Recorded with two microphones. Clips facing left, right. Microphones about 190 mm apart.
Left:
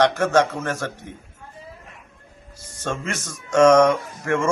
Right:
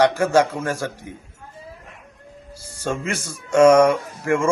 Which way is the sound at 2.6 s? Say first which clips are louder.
Right 2 dB; 10° right (ahead or behind).